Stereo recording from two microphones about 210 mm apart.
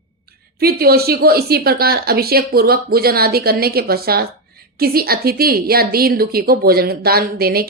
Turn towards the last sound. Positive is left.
turn(degrees=-45)  # may be behind; listen again after turning